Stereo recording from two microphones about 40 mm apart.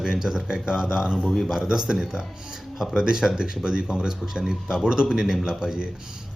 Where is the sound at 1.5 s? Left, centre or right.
Centre.